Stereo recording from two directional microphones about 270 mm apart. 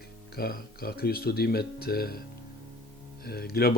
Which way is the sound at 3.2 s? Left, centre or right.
Left.